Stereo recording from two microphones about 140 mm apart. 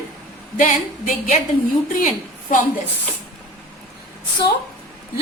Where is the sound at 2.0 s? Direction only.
70° left (ahead or behind).